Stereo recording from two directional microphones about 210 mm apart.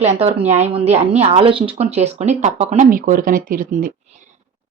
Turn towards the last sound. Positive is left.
turn(degrees=-40)  # may be behind; listen again after turning